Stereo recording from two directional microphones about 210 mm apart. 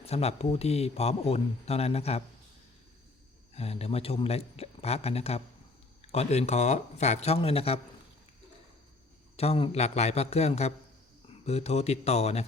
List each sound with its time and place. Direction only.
0.0 s speech: 30° left (ahead or behind)
3.5 s speech: 30° left (ahead or behind)
9.3 s a man's voice: 30° left (ahead or behind)